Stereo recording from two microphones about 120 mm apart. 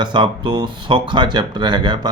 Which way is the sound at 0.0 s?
40° right (ahead or behind).